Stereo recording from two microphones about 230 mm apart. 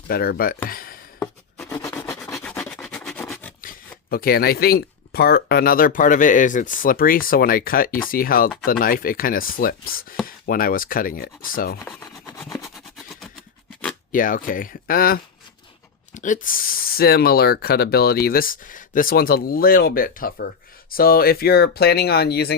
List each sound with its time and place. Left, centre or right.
0.1 s speech: left
1.2 s a sound: centre
2.1 s rub: centre
4.1 s speech: left
11.9 s rub: centre
14.1 s speech: left